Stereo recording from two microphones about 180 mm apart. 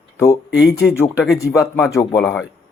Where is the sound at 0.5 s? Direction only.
65° left (ahead or behind).